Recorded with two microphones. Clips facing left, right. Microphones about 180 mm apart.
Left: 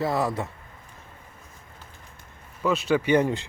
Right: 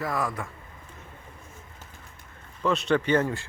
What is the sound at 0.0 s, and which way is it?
Speech, 30° left (ahead or behind).